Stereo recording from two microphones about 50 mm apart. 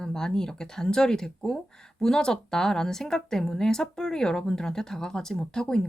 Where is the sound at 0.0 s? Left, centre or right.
Centre.